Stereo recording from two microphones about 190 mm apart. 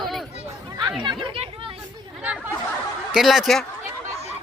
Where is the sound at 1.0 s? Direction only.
25° right (ahead or behind).